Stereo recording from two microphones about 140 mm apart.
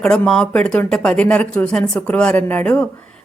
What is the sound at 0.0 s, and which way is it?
Speech, 5° left (ahead or behind).